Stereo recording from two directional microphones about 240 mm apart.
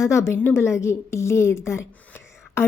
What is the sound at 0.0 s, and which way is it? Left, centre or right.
A woman's voice, centre.